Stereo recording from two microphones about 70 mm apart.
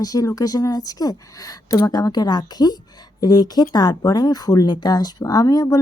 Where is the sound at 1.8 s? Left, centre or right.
Left.